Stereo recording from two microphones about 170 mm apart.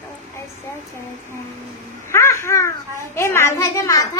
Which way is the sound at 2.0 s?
15° left (ahead or behind).